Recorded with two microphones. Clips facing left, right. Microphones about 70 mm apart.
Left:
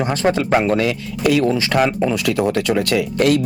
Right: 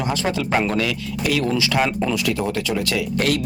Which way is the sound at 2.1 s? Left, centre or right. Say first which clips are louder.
Left 4 dB; left.